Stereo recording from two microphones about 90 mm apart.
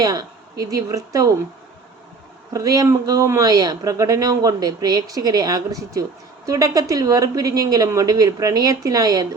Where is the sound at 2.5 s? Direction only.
40° right (ahead or behind).